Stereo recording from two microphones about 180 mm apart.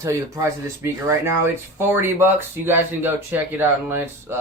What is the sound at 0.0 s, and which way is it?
Speech, 15° right (ahead or behind).